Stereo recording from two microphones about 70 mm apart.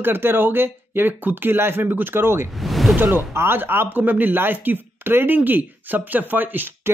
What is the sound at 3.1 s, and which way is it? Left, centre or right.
Speech, right.